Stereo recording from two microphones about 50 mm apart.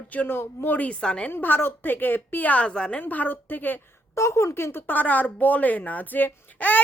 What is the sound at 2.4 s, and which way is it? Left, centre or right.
Speech, left.